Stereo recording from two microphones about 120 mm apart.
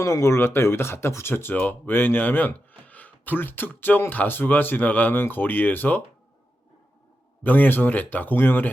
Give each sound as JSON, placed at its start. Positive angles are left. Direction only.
{"t": 0.0, "sound": "speech", "side_deg": 25}
{"t": 7.4, "sound": "speech", "side_deg": 15}